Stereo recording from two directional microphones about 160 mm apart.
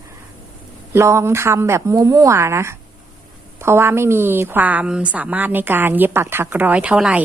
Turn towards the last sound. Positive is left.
turn(degrees=-5)  # may be behind; listen again after turning